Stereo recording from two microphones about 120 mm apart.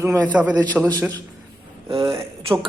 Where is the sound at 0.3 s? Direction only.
10° right (ahead or behind).